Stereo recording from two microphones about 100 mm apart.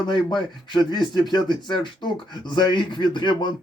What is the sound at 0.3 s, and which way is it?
Speech, 45° left (ahead or behind).